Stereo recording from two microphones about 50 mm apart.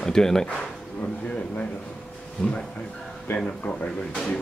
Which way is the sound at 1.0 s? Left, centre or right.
Left.